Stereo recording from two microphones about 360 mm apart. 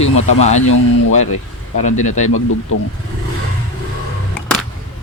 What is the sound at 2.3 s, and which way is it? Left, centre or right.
Speech, left.